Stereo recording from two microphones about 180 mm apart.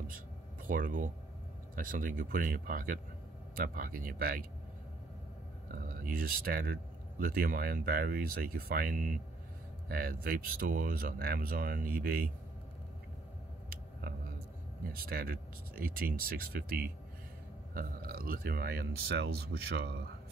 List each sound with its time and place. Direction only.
0.7 s speech: 50° right (ahead or behind)
5.7 s speech: 50° right (ahead or behind)
14.9 s speech: 55° right (ahead or behind)